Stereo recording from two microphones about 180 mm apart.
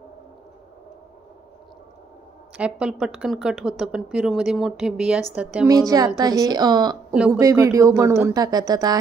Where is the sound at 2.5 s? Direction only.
5° right (ahead or behind).